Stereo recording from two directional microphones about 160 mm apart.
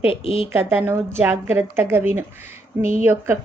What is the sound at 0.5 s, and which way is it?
Speech, 15° right (ahead or behind).